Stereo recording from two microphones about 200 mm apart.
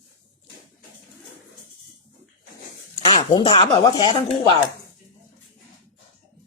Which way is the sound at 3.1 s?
25° left (ahead or behind).